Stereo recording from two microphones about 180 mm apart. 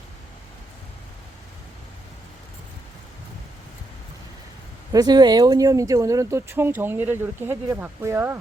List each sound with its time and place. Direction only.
4.9 s speech: 20° right (ahead or behind)